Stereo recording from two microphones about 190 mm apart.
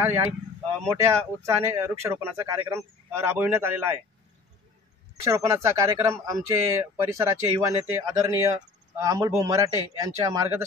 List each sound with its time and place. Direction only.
0.0 s speech: 15° right (ahead or behind)
5.2 s speech: 15° right (ahead or behind)